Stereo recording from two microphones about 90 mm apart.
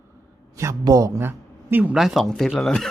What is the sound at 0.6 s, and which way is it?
Speech, 35° right (ahead or behind).